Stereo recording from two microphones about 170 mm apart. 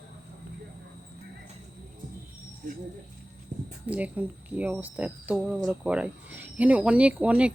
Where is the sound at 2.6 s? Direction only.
50° right (ahead or behind).